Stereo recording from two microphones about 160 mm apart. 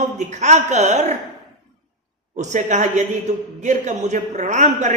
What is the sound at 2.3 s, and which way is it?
A woman's voice, 50° right (ahead or behind).